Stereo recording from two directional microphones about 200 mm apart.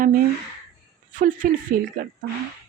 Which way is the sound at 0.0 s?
45° right (ahead or behind).